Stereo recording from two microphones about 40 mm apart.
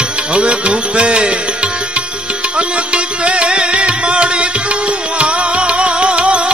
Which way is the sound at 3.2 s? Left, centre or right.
Right.